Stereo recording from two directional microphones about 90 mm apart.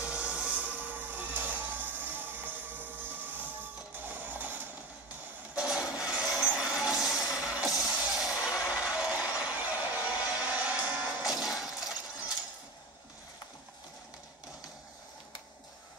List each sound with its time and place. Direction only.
0.0 s music: 10° right (ahead or behind)
5.5 s a sound: 10° right (ahead or behind)
5.9 s wood: 10° right (ahead or behind)
6.3 s a sound: 15° right (ahead or behind)
8.2 s music: 10° right (ahead or behind)
11.2 s music: 5° right (ahead or behind)